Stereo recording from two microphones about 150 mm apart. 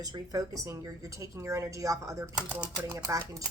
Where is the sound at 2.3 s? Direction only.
10° right (ahead or behind).